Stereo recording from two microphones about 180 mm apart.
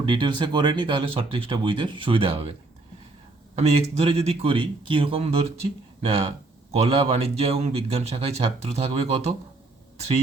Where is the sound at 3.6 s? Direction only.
35° right (ahead or behind).